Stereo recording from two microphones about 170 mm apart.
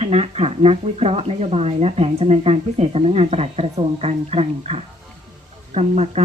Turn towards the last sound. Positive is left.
turn(degrees=-40)  # may be behind; listen again after turning